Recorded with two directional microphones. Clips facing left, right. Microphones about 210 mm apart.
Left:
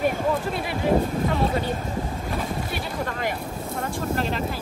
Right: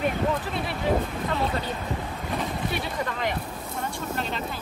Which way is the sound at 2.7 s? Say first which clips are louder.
Left 1 dB; centre (ahead or behind).